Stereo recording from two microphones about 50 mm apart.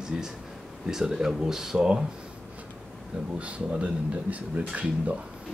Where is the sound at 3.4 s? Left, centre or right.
Right.